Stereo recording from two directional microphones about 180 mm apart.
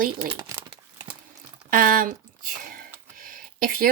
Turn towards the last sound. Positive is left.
turn(degrees=-50)  # may be behind; listen again after turning